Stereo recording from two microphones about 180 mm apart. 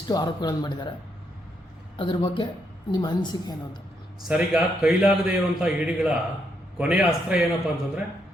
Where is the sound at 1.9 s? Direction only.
25° left (ahead or behind).